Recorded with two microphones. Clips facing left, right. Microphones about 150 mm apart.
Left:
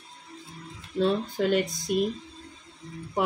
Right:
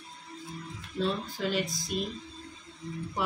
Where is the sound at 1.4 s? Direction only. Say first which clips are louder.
Left 6 dB; 55° left (ahead or behind).